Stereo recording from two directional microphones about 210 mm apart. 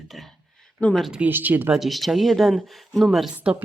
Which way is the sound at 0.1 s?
Centre (ahead or behind).